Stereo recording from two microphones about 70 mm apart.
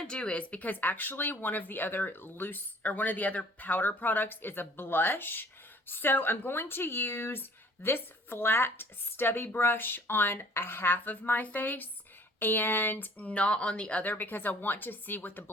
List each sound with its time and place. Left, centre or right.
0.0 s speech: centre